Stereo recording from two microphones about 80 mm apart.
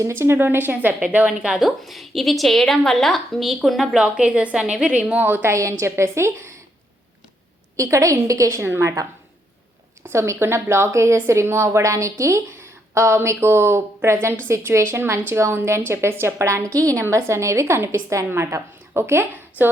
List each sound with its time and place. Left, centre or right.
0.1 s a woman's voice: right
1.3 s a woman's voice: centre; by 6.5 s right
7.8 s a woman's voice: right
10.1 s a woman's voice: right